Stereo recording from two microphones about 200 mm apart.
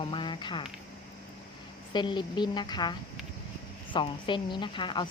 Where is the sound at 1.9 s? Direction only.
20° left (ahead or behind).